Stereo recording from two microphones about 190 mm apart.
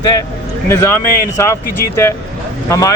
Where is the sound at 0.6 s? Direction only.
15° left (ahead or behind).